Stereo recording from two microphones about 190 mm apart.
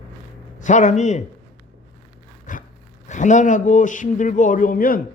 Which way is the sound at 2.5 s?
45° left (ahead or behind).